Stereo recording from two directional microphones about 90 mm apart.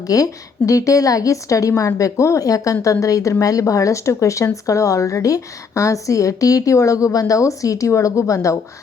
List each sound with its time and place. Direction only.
0.1 s speech: 40° left (ahead or behind)